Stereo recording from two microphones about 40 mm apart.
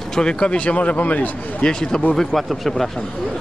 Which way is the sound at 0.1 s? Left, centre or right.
Left.